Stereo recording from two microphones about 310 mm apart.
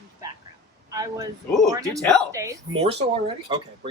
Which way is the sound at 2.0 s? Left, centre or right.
Centre.